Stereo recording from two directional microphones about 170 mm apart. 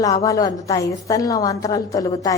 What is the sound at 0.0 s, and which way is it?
A woman's voice, 20° left (ahead or behind).